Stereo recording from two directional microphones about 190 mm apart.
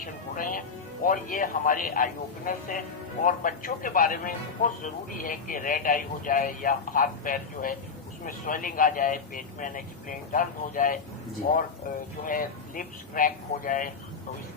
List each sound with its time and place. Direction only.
0.0 s speech: 45° left (ahead or behind)